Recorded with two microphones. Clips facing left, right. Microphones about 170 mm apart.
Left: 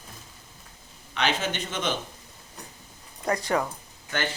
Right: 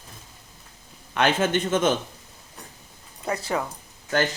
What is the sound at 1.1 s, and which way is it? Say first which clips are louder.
Speech: right 6 dB; 50° right (ahead or behind).